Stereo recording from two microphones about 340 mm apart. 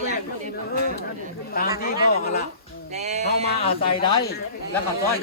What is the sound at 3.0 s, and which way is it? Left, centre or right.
Speech, centre.